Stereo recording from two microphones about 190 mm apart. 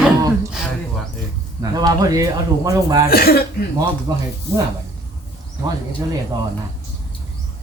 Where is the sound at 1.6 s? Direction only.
20° right (ahead or behind).